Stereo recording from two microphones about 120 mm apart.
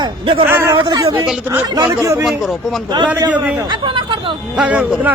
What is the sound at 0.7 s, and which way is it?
Speech, 40° right (ahead or behind).